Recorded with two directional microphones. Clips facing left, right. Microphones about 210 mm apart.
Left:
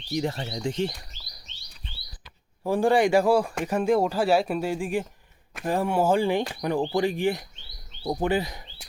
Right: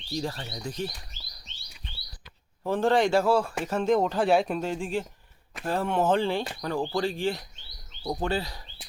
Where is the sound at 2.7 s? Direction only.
10° left (ahead or behind).